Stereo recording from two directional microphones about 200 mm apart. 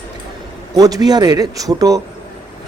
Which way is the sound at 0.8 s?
20° right (ahead or behind).